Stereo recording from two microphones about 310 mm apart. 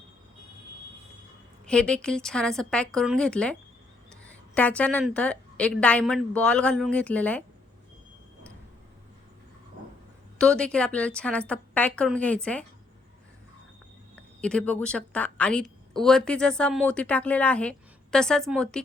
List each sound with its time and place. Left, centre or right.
1.6 s a woman's voice: centre
10.3 s a woman's voice: centre
14.4 s a woman's voice: centre